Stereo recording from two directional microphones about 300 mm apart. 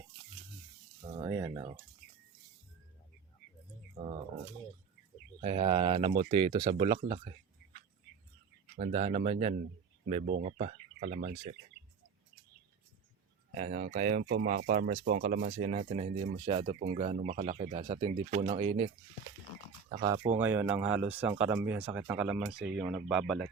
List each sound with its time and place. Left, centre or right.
1.1 s speech: centre
5.4 s speech: centre
8.8 s speech: right
13.5 s speech: right
20.0 s speech: centre